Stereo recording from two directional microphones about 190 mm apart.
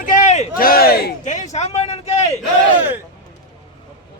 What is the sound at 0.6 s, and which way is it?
Speech, 50° left (ahead or behind).